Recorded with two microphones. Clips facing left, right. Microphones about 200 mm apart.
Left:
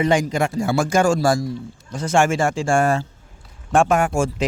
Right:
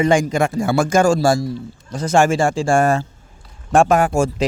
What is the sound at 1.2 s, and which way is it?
Speech, 30° right (ahead or behind).